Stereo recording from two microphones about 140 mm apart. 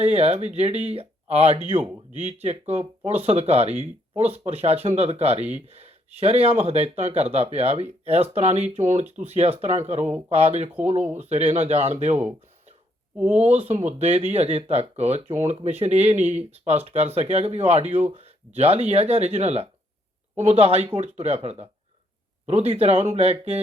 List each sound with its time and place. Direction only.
0.0 s speech: 50° right (ahead or behind)
13.3 s speech: 50° right (ahead or behind)